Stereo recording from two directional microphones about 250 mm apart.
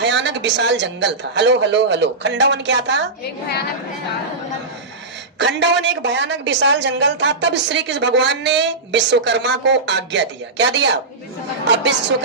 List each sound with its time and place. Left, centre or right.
0.0 s a woman's voice: right
5.4 s a woman's voice: right